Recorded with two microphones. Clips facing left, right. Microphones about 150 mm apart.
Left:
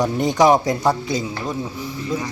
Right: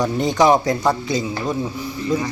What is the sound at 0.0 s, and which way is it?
Speech, 15° left (ahead or behind).